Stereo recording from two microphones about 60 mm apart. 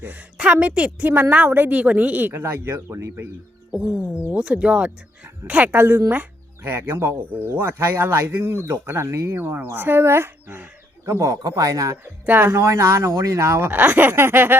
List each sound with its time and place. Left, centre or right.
0.0 s a woman's voice: right
0.9 s speech: right
1.7 s a woman's voice: right
2.4 s speech: right
3.7 s music: centre
4.1 s a woman's voice: right
7.3 s speech: right
7.6 s speech: right
11.2 s speech: right
12.2 s speech: right
12.5 s speech: right
13.6 s speech: right